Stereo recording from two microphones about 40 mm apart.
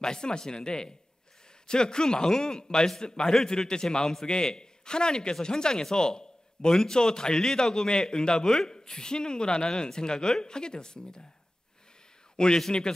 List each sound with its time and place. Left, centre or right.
0.0 s a man's voice: centre
12.5 s a man's voice: centre